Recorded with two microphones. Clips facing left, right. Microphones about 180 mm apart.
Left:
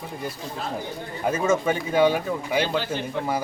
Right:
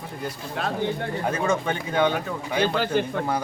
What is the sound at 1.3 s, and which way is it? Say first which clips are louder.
Speech: left 4 dB; 5° left (ahead or behind).